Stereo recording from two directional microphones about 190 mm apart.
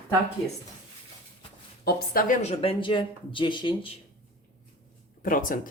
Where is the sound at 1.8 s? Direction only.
50° left (ahead or behind); by 3.9 s 25° left (ahead or behind).